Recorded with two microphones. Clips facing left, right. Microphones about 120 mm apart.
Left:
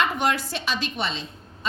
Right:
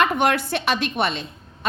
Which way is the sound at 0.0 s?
60° right (ahead or behind).